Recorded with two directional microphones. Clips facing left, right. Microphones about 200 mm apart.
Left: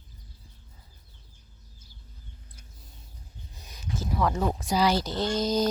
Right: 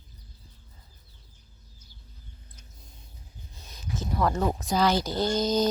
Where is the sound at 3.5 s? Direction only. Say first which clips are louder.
Right 1 dB; 15° left (ahead or behind).